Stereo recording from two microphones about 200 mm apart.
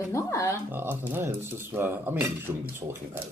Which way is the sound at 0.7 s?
10° right (ahead or behind).